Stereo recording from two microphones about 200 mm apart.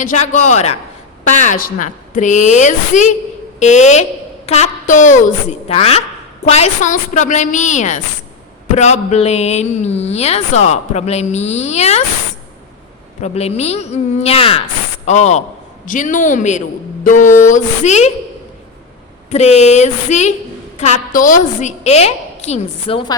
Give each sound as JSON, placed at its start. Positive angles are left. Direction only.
{"t": 0.0, "sound": "speech", "side_deg": 35}
{"t": 13.2, "sound": "speech", "side_deg": 30}
{"t": 19.3, "sound": "speech", "side_deg": 30}